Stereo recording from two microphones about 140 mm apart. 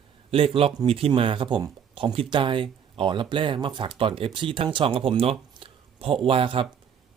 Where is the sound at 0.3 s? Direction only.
45° right (ahead or behind).